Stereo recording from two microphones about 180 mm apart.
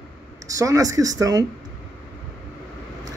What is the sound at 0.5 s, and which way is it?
Speech, 20° right (ahead or behind).